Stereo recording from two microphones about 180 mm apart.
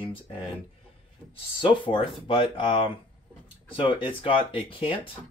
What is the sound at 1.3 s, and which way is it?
Speech, 30° left (ahead or behind).